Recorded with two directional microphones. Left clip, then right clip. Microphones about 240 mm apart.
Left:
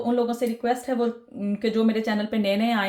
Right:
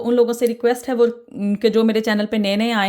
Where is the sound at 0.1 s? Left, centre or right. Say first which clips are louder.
Right 9 dB; right.